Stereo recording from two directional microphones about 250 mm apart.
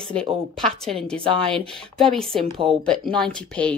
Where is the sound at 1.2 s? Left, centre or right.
Right.